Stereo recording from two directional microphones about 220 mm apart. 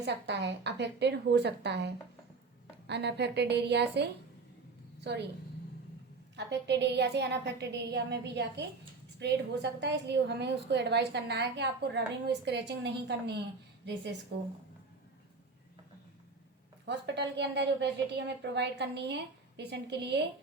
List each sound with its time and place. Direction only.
0.0 s a woman's voice: 50° right (ahead or behind)
6.3 s a woman's voice: 50° right (ahead or behind)
16.8 s a woman's voice: 50° right (ahead or behind)